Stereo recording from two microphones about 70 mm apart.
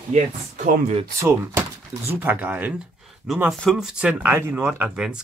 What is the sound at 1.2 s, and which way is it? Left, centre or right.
Speech, right.